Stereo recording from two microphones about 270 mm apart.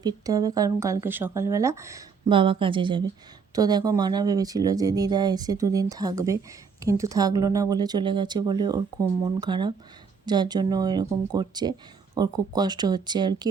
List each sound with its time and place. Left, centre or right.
0.0 s speech: centre